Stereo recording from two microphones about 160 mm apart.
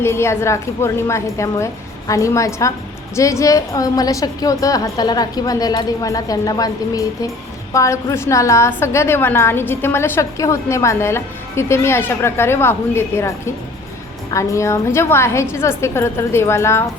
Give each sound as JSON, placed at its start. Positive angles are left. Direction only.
{"t": 0.0, "sound": "a woman's voice", "side_deg": 15}